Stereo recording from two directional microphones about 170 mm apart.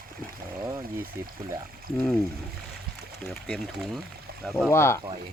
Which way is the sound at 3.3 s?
Centre (ahead or behind).